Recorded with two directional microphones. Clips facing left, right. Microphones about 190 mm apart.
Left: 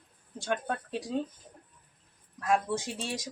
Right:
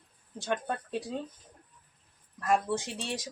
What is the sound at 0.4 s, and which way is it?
Speech, centre (ahead or behind).